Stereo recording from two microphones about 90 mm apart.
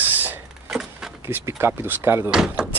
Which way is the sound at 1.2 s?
30° right (ahead or behind).